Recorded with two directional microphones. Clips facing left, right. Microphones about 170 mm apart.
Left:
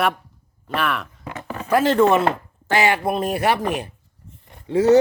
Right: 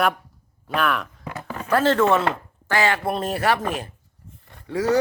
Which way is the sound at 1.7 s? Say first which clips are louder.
Left 2 dB; 15° left (ahead or behind).